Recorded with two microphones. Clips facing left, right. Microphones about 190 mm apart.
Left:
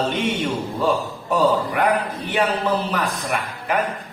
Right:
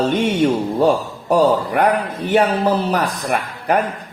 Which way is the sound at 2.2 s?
40° right (ahead or behind).